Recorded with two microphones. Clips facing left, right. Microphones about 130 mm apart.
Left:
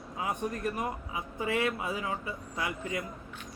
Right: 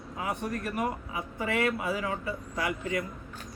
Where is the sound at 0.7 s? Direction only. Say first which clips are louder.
Right 3 dB; 25° left (ahead or behind).